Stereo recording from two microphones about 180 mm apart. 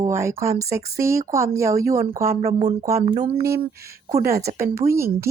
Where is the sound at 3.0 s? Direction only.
35° right (ahead or behind).